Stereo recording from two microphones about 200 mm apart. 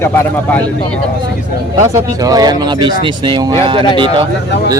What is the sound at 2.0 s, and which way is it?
Speech, 20° right (ahead or behind).